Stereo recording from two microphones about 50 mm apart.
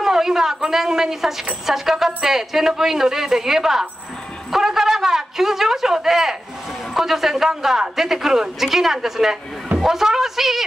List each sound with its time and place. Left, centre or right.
0.0 s a woman's voice: centre
4.5 s a sound: centre
6.9 s a woman's voice: centre